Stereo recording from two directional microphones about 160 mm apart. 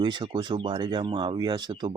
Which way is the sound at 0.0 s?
30° right (ahead or behind).